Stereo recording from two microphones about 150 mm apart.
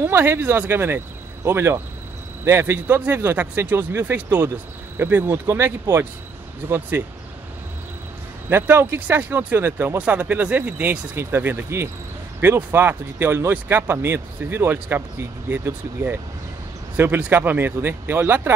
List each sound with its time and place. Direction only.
0.0 s speech: 15° right (ahead or behind)
8.5 s speech: 15° right (ahead or behind)